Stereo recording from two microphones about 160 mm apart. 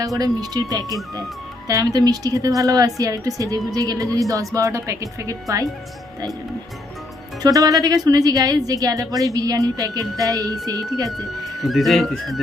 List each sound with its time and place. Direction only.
0.2 s a woman's voice: 25° right (ahead or behind)
7.4 s a woman's voice: 20° right (ahead or behind)
11.6 s speech: centre (ahead or behind)